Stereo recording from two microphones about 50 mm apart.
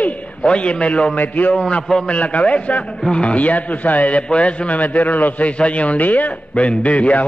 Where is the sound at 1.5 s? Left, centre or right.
Centre.